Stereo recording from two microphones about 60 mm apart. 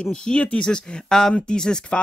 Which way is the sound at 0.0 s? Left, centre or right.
Centre.